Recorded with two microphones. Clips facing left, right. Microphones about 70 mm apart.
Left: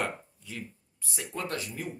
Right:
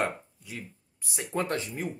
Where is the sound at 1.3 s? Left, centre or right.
Right.